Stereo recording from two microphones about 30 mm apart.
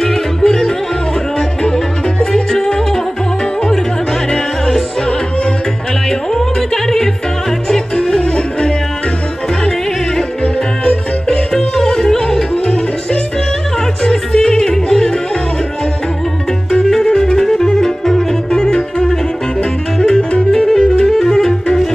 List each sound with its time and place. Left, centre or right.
0.4 s music: centre
6.0 s music: centre
7.9 s music: left
11.7 s yodeling: left
12.6 s music: left
14.3 s yodeling: centre
17.0 s music: left
18.5 s music: left
20.0 s music: left
21.1 s music: centre